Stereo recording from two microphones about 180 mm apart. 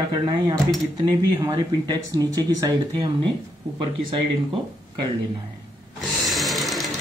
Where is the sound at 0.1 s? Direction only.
25° right (ahead or behind).